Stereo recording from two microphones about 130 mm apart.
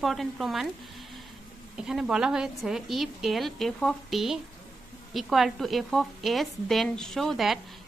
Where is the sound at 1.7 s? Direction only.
5° right (ahead or behind).